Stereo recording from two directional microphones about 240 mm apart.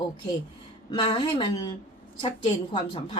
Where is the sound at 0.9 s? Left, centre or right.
Left.